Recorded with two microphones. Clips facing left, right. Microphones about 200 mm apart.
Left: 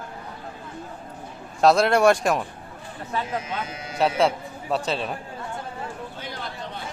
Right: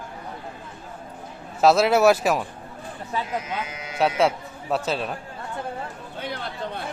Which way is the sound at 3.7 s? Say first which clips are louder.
Left 1 dB; 30° left (ahead or behind).